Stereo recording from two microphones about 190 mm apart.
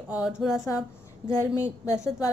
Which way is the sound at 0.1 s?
5° right (ahead or behind).